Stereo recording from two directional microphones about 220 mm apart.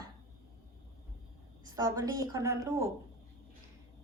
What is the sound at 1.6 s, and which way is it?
A woman's voice, 15° right (ahead or behind).